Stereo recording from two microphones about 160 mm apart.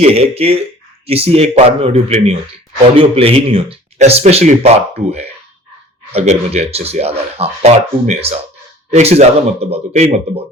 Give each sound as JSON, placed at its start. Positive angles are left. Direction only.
{"t": 0.0, "sound": "speech", "side_deg": -40}
{"t": 6.1, "sound": "speech", "side_deg": -40}